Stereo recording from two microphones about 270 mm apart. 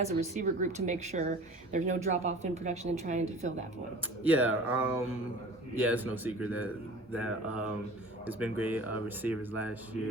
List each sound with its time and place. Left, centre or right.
0.0 s speech: right
4.2 s speech: centre